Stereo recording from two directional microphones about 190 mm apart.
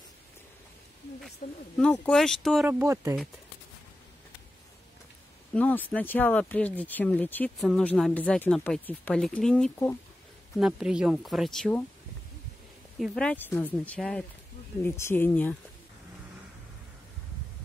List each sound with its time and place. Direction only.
1.4 s speech: 50° left (ahead or behind)
1.8 s speech: 5° left (ahead or behind)
2.6 s speech: 10° right (ahead or behind)
5.5 s speech: 5° left (ahead or behind)
10.6 s speech: 5° right (ahead or behind)
13.0 s speech: 5° left (ahead or behind)